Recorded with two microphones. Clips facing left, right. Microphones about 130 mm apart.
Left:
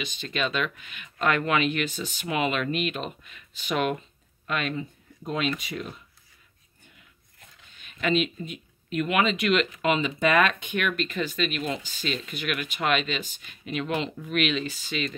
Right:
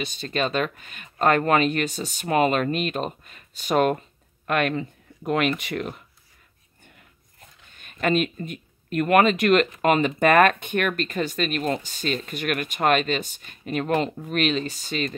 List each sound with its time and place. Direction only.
0.0 s speech: 40° right (ahead or behind)
4.5 s speech: 55° right (ahead or behind)
7.0 s speech: 50° right (ahead or behind)